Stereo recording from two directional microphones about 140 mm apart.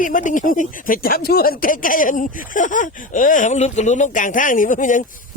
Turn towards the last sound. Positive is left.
turn(degrees=70)  # may be behind; listen again after turning